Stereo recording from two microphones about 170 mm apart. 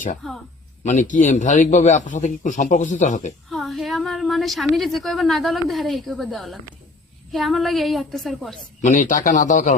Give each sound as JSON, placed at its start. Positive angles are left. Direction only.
{"t": 0.2, "sound": "a woman's voice", "side_deg": 0}
{"t": 0.9, "sound": "a man's voice", "side_deg": 45}
{"t": 3.5, "sound": "a woman's voice", "side_deg": 0}
{"t": 8.8, "sound": "a man's voice", "side_deg": 50}